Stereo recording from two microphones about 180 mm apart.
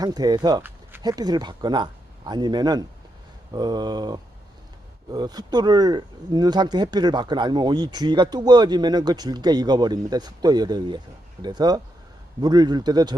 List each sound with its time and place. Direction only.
0.0 s speech: 20° right (ahead or behind)